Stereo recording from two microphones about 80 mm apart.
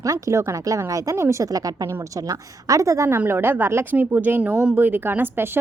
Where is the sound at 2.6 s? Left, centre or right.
Right.